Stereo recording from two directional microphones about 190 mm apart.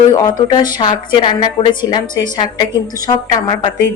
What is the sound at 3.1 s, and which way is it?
Speech, 25° left (ahead or behind).